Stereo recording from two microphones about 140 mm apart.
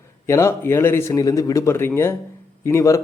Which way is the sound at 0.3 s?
20° left (ahead or behind).